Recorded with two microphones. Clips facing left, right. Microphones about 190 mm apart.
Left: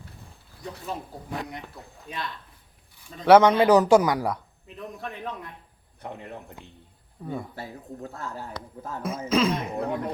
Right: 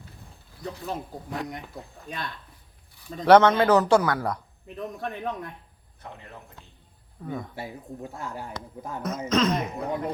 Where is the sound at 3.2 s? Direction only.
10° left (ahead or behind).